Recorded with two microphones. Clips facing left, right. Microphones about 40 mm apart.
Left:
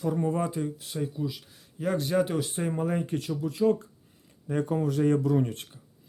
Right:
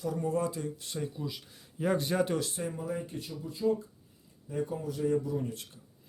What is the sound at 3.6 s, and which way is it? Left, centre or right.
Speech, left.